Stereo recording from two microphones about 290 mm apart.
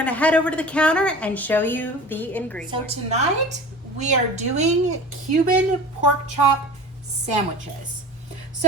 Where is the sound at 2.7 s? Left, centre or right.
Right.